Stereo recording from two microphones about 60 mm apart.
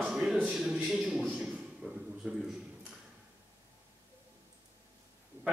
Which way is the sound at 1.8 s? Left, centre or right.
Centre.